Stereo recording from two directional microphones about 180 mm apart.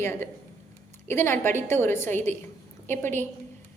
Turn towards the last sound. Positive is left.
turn(degrees=10)  # may be behind; listen again after turning